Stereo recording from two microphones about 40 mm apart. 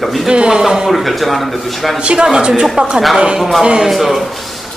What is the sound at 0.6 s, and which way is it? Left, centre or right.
A man's voice, centre.